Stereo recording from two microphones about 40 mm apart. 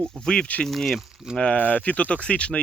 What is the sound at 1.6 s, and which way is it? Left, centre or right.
Speech, left.